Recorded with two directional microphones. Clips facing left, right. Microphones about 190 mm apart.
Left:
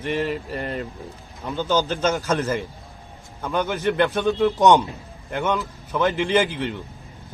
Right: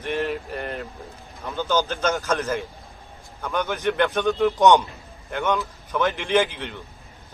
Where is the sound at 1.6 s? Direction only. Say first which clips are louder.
Left 1 dB; 10° left (ahead or behind).